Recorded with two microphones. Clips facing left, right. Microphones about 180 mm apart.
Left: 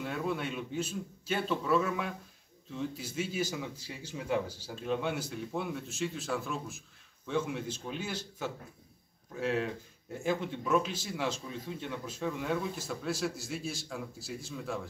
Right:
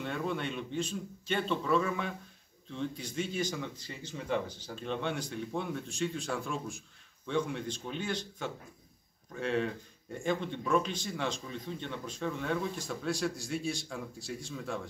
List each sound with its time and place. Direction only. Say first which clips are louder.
0.0 s speech: even; 5° left (ahead or behind)